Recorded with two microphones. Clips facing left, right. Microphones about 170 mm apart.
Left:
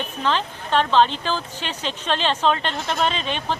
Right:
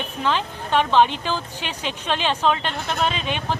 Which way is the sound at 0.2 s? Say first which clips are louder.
Even; 10° right (ahead or behind).